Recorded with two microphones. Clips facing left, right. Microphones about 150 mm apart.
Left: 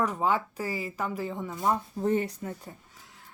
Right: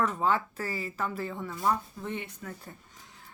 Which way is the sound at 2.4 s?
25° left (ahead or behind).